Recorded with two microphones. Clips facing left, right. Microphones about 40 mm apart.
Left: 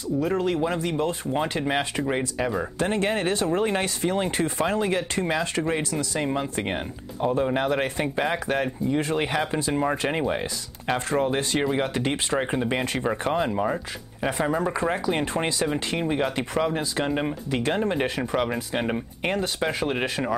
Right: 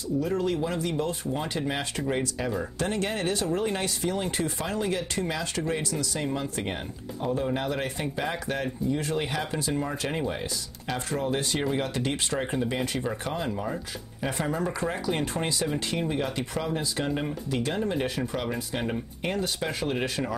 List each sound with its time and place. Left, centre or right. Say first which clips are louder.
0.2 s speech: left 4 dB; left
11.6 s speech: left 3 dB; left
19.3 s speech: left 4 dB; centre